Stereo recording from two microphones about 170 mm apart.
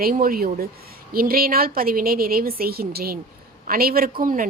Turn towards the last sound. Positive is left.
turn(degrees=-55)  # may be behind; listen again after turning